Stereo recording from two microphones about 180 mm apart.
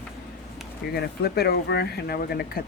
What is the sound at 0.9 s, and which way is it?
Speech, 65° left (ahead or behind).